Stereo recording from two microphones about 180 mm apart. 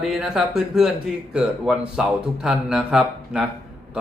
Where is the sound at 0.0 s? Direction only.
5° right (ahead or behind).